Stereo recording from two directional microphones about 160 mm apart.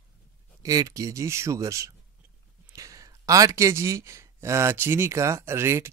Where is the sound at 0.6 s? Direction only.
20° right (ahead or behind).